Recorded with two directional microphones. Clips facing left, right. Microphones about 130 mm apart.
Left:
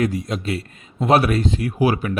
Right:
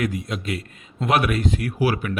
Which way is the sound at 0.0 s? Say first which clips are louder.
Left 4 dB; 35° left (ahead or behind).